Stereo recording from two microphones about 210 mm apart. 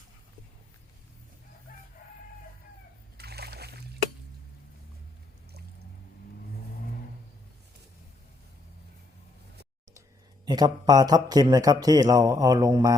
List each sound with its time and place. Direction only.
1.7 s crowing: 40° left (ahead or behind)
3.2 s splash: 50° right (ahead or behind)
10.4 s speech: 20° right (ahead or behind)